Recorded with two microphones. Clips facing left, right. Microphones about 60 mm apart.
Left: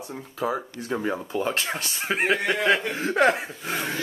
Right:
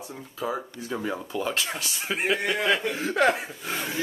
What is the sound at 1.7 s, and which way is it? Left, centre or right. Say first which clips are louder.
Speech: left 2 dB; left.